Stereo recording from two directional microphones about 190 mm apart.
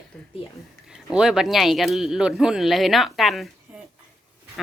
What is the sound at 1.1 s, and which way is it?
Speech, 5° right (ahead or behind).